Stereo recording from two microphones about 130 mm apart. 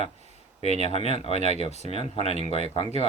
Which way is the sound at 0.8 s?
50° left (ahead or behind).